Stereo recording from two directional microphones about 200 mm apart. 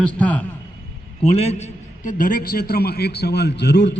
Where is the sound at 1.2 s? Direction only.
30° left (ahead or behind); by 3.9 s 60° left (ahead or behind).